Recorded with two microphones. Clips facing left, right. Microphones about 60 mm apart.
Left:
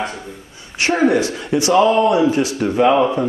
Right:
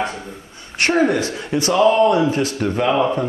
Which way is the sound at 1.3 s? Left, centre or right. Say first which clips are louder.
Left 3 dB; centre.